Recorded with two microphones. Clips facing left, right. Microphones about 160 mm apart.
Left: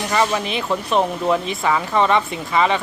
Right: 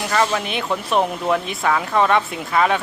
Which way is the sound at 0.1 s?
5° left (ahead or behind).